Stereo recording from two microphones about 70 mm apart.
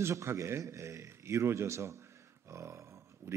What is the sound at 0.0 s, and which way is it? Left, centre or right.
A man's voice, right.